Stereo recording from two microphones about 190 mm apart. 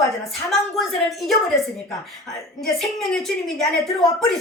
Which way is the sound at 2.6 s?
Centre (ahead or behind).